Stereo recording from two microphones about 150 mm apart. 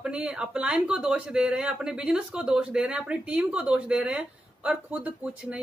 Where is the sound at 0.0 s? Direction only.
5° right (ahead or behind).